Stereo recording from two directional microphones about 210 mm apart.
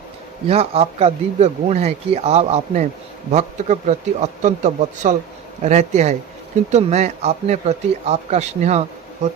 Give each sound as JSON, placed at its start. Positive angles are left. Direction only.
{"t": 0.4, "sound": "speech", "side_deg": -30}